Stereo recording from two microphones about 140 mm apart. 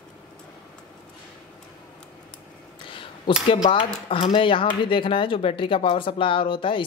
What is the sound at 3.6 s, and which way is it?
Speech, 40° left (ahead or behind).